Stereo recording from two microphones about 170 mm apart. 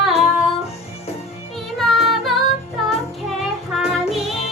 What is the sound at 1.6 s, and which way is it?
Child singing, centre (ahead or behind).